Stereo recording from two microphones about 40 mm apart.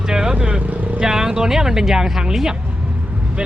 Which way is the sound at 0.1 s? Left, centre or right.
Centre.